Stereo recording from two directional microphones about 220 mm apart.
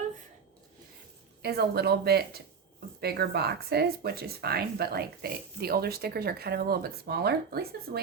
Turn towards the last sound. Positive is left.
turn(degrees=-45)  # may be behind; listen again after turning